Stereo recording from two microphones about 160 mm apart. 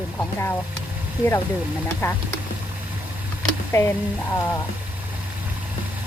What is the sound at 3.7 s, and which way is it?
Speech, 15° left (ahead or behind).